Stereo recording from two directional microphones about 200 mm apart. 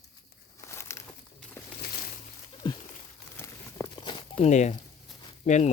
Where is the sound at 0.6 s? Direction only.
15° left (ahead or behind).